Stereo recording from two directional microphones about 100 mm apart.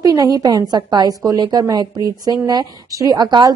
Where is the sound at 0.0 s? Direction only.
35° right (ahead or behind).